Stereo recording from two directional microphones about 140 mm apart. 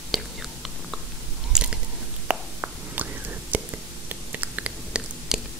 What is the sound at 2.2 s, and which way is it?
Whispering, 10° right (ahead or behind).